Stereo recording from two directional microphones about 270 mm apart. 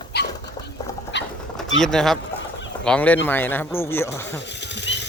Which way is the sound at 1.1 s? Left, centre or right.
Left.